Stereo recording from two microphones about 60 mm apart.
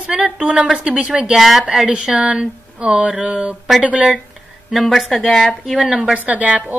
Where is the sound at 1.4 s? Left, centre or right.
Centre.